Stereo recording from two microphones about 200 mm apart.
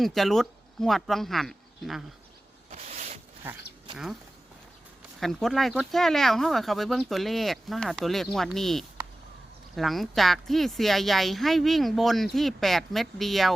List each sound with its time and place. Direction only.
0.0 s speech: centre (ahead or behind)
2.7 s zipper: 35° right (ahead or behind)
3.4 s speech: 10° right (ahead or behind)
5.2 s speech: centre (ahead or behind)